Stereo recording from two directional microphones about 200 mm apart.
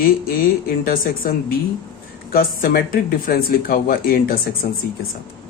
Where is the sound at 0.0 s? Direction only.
50° left (ahead or behind).